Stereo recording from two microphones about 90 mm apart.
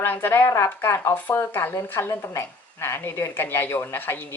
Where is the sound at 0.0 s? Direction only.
25° left (ahead or behind).